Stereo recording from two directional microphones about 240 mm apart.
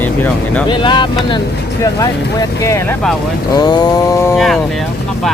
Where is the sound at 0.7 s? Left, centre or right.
Centre.